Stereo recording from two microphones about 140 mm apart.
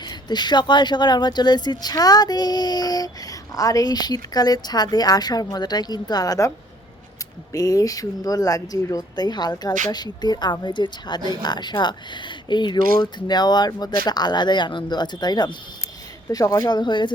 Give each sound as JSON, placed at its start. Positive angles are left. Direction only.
{"t": 0.0, "sound": "a woman's voice", "side_deg": 30}
{"t": 7.5, "sound": "a woman's voice", "side_deg": 25}